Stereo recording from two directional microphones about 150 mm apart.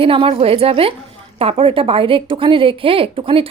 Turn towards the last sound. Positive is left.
turn(degrees=-35)  # may be behind; listen again after turning